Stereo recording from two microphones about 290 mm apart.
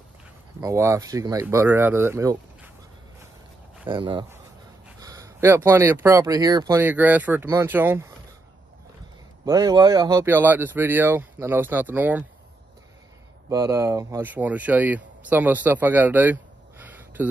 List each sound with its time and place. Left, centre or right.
0.6 s speech: centre
3.9 s speech: centre
9.4 s speech: centre
13.5 s speech: centre